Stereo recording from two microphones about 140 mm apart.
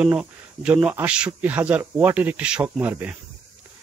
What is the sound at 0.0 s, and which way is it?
Speech, 10° right (ahead or behind).